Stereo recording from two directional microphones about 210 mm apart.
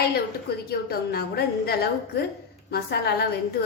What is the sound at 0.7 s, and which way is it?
A woman's voice, 50° left (ahead or behind).